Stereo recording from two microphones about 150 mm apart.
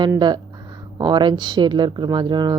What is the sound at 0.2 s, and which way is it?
Speech, 30° right (ahead or behind).